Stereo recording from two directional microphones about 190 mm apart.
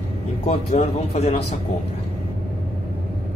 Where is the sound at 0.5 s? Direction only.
35° left (ahead or behind).